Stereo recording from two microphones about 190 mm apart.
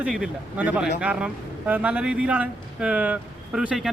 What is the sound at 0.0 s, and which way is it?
Speech, 5° right (ahead or behind).